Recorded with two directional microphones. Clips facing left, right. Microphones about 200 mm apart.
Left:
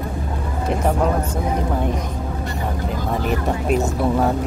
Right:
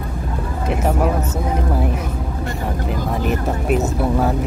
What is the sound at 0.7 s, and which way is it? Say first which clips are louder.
Speech: even; 5° right (ahead or behind).